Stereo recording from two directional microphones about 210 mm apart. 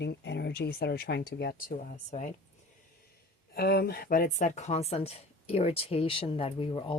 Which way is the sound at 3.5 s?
50° left (ahead or behind).